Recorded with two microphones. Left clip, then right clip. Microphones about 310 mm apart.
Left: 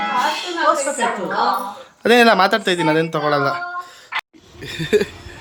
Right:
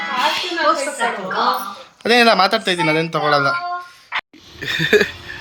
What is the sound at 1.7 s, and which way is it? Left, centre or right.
Speech, centre.